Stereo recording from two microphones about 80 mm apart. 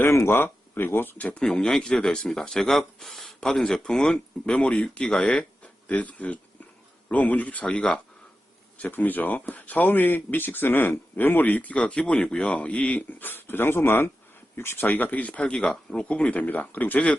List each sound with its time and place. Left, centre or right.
0.0 s speech: left
1.2 s speech: centre